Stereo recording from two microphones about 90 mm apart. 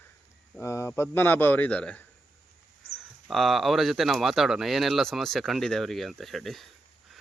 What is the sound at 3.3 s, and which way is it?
Speech, centre (ahead or behind).